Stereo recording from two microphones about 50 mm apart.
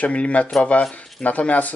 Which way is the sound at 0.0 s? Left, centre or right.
Left.